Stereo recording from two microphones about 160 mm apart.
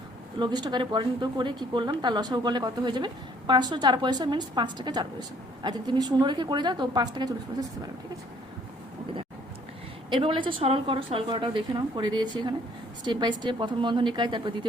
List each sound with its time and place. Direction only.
0.3 s speech: 25° right (ahead or behind)
10.1 s a woman's voice: 30° right (ahead or behind)